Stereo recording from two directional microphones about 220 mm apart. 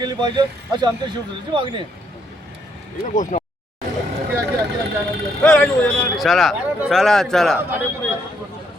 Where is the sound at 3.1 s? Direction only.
35° left (ahead or behind).